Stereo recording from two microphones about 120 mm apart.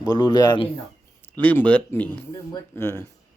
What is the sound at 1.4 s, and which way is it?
Speech, 15° left (ahead or behind).